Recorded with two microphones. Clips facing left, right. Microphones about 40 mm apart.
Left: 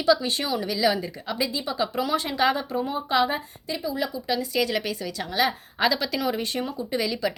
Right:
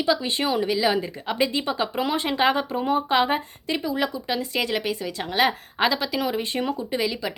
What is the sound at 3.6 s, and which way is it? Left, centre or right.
Speech, right.